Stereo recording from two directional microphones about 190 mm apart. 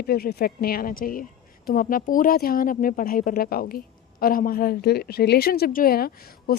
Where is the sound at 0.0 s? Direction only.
55° left (ahead or behind).